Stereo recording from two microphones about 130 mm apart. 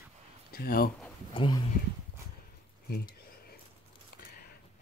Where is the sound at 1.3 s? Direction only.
35° left (ahead or behind).